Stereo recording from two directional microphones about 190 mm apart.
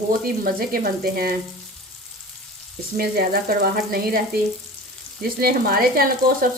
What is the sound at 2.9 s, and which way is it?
Frying, 50° right (ahead or behind).